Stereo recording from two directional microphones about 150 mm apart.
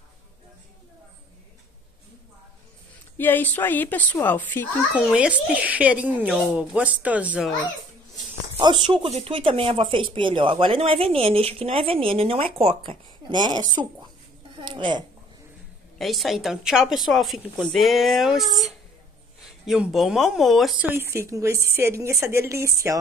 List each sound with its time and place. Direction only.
3.2 s a woman's voice: 10° left (ahead or behind)
4.9 s speech: 5° right (ahead or behind)
8.5 s speech: 30° right (ahead or behind)
16.0 s speech: centre (ahead or behind)
20.8 s speech: 15° right (ahead or behind)